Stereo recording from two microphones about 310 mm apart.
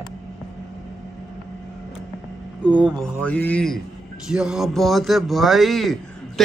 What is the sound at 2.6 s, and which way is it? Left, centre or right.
A man's voice, centre.